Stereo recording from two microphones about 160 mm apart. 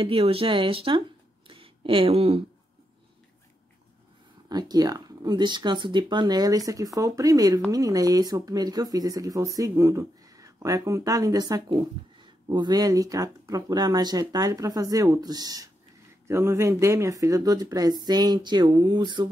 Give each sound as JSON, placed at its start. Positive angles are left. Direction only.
{"t": 0.0, "sound": "speech", "side_deg": -35}
{"t": 1.5, "sound": "a sound", "side_deg": -35}
{"t": 4.5, "sound": "speech", "side_deg": -25}